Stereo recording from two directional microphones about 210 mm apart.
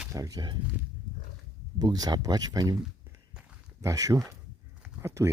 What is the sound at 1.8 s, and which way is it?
Speech, 20° right (ahead or behind).